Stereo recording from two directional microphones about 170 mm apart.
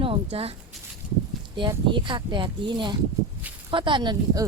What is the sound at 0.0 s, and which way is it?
Speech, 35° right (ahead or behind).